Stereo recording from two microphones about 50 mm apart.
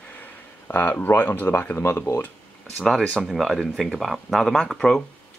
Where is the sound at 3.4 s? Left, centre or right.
Centre.